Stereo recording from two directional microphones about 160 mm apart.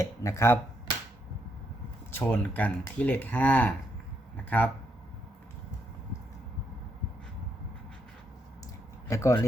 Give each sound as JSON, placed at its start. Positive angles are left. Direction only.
{"t": 0.0, "sound": "speech", "side_deg": 20}
{"t": 2.1, "sound": "speech", "side_deg": 10}
{"t": 9.0, "sound": "speech", "side_deg": 20}